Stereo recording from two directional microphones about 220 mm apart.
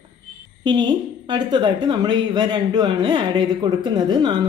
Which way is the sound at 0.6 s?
20° right (ahead or behind).